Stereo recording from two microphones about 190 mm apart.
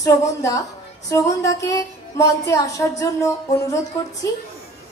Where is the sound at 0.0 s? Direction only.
15° left (ahead or behind).